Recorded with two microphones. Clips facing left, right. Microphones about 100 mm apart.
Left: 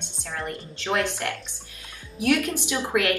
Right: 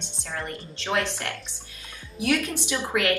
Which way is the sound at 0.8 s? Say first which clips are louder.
Left 2 dB; 15° left (ahead or behind).